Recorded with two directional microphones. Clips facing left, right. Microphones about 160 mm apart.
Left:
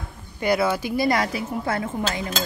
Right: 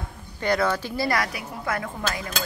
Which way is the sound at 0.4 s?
10° left (ahead or behind).